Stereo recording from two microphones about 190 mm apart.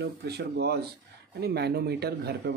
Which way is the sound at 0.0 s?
60° right (ahead or behind).